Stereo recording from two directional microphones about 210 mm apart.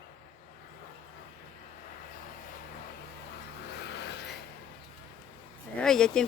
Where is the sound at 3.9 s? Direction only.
55° left (ahead or behind).